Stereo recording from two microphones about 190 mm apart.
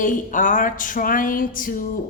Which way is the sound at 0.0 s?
45° left (ahead or behind).